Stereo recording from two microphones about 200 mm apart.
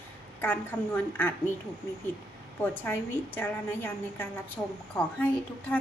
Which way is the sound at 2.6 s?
10° left (ahead or behind).